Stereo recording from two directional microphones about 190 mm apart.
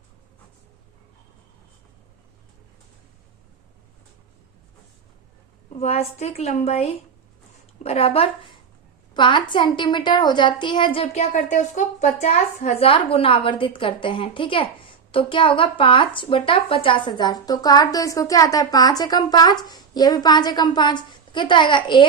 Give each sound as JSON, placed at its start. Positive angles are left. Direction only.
{"t": 5.8, "sound": "a woman's voice", "side_deg": 35}